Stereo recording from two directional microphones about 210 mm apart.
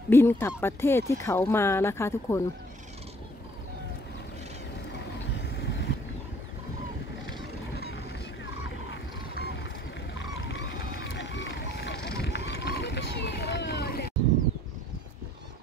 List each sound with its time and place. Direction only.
0.1 s speech: 10° left (ahead or behind)
5.3 s vehicle: 55° left (ahead or behind)
8.9 s vehicle: 55° left (ahead or behind)
11.1 s run: 55° left (ahead or behind)
12.4 s rowboat: 50° left (ahead or behind)